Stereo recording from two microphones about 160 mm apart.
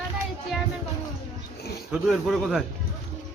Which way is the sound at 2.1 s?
Centre (ahead or behind).